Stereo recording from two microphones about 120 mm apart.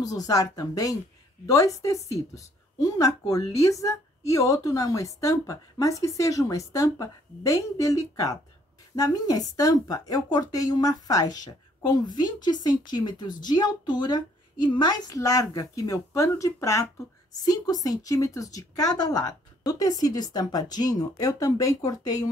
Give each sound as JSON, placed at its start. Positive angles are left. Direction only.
{"t": 0.0, "sound": "a woman's voice", "side_deg": 30}